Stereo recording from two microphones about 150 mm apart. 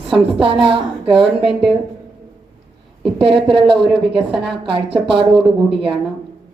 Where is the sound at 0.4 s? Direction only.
35° right (ahead or behind).